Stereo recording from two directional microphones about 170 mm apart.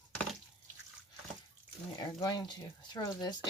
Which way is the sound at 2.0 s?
25° left (ahead or behind).